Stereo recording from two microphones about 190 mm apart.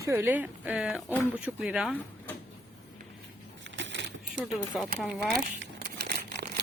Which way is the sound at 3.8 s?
70° right (ahead or behind).